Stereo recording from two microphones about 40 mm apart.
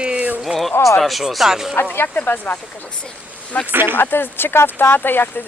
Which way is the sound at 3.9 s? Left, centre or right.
Left.